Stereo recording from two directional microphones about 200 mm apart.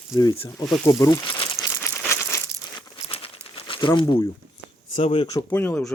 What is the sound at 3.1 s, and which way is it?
Crumpling, 30° left (ahead or behind).